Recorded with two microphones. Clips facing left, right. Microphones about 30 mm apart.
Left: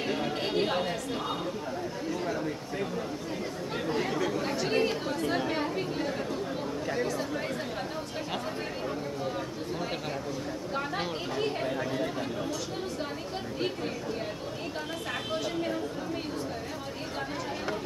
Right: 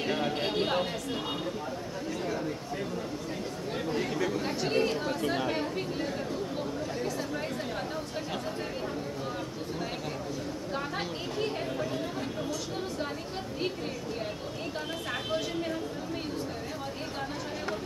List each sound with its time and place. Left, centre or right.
0.0 s a sound: centre
3.7 s chatter: centre
10.7 s chatter: centre